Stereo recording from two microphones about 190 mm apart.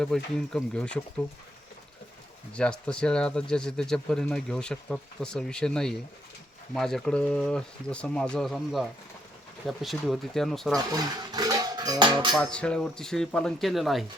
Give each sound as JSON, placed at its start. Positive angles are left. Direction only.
{"t": 0.0, "sound": "speech", "side_deg": 5}
{"t": 2.5, "sound": "speech", "side_deg": 5}
{"t": 10.9, "sound": "dishes", "side_deg": -20}
{"t": 12.3, "sound": "speech", "side_deg": 5}